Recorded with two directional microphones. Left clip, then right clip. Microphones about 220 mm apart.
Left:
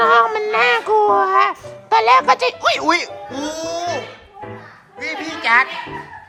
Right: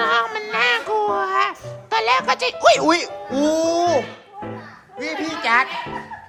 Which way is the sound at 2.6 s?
20° right (ahead or behind).